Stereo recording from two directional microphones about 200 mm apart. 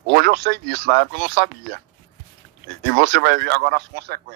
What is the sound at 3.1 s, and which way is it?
Speech, 55° right (ahead or behind).